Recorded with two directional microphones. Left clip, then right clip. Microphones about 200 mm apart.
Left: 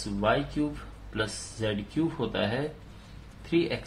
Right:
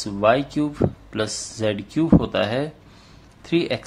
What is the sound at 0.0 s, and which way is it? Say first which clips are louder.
Speech: right 9 dB; 45° right (ahead or behind).